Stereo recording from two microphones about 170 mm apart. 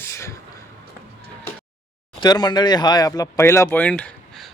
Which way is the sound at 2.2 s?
25° left (ahead or behind).